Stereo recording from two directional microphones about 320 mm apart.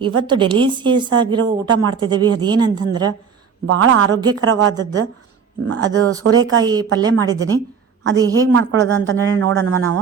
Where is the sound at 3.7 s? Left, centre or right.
Right.